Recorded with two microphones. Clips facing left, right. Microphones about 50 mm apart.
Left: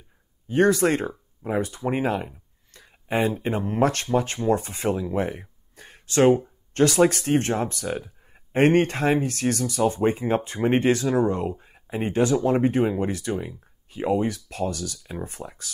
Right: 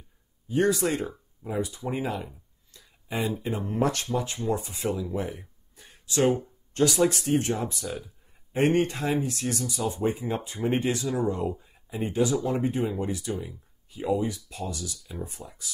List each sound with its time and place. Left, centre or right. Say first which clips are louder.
0.5 s speech: left 5 dB; left
6.2 s speech: left 6 dB; left
6.7 s speech: left 4 dB; left